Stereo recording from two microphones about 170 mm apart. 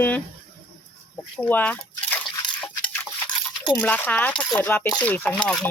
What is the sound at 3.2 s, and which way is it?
Coin, 25° left (ahead or behind).